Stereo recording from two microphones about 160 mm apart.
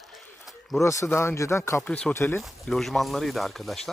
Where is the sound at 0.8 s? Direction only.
15° left (ahead or behind).